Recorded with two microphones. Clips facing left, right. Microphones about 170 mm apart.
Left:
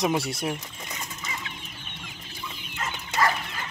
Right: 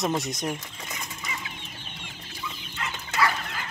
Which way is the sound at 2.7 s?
40° left (ahead or behind).